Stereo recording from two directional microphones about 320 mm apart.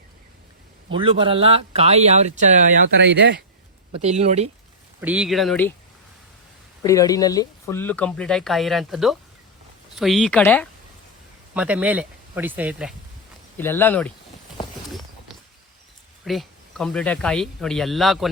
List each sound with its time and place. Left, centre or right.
0.9 s speech: centre; by 3.4 s right
3.9 s speech: centre
4.9 s speech: centre
6.8 s speech: centre
13.6 s speech: centre
16.2 s speech: centre